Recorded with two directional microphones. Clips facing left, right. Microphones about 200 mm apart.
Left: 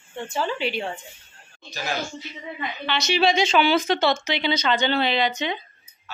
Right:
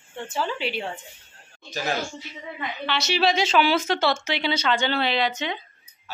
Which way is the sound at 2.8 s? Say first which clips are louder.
Left 2 dB; 5° right (ahead or behind).